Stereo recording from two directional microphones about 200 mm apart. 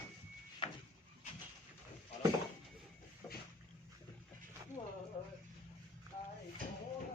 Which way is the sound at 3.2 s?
15° left (ahead or behind).